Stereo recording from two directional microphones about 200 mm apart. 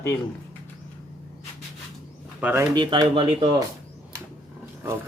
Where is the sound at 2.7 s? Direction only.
20° right (ahead or behind).